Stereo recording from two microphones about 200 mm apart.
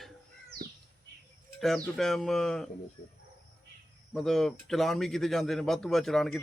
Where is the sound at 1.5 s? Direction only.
Centre (ahead or behind).